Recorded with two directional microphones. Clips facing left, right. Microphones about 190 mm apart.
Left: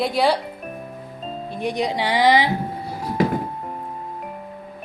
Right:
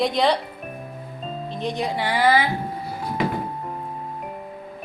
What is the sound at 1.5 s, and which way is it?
Speech, 15° left (ahead or behind).